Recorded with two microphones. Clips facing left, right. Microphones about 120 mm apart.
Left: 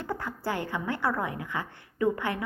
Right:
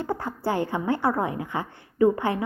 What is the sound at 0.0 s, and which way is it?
A woman's voice, 30° right (ahead or behind).